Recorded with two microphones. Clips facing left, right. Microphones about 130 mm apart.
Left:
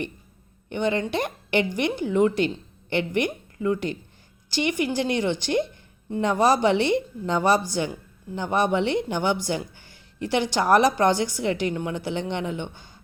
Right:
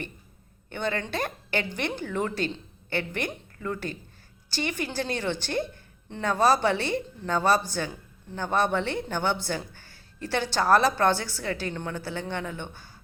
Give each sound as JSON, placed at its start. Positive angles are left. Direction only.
{"t": 0.7, "sound": "a woman's voice", "side_deg": 15}